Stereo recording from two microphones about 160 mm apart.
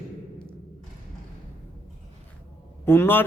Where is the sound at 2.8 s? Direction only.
15° left (ahead or behind).